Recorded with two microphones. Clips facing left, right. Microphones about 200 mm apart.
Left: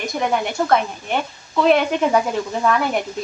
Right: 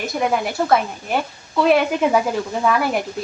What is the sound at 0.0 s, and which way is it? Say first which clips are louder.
Speech: right 1 dB; 5° right (ahead or behind).